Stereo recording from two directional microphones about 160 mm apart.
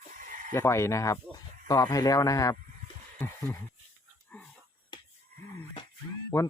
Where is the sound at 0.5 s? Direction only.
15° left (ahead or behind).